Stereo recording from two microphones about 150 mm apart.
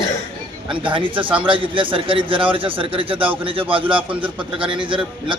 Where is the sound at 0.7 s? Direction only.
35° right (ahead or behind).